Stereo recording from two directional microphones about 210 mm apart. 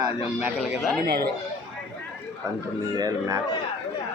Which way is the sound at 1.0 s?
45° right (ahead or behind).